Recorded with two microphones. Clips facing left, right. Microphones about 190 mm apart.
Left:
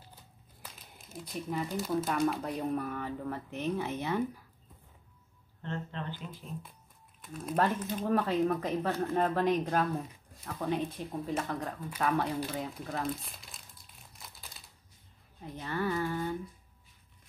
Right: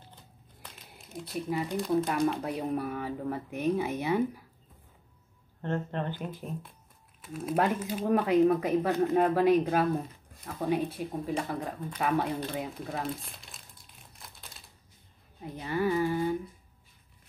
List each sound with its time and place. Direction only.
0.1 s crumpling: 5° left (ahead or behind)
2.2 s speech: centre (ahead or behind)
2.5 s speech: 10° right (ahead or behind)
5.6 s speech: 50° right (ahead or behind)
7.2 s speech: 5° right (ahead or behind)
14.2 s typewriter: centre (ahead or behind)
15.5 s speech: 15° right (ahead or behind)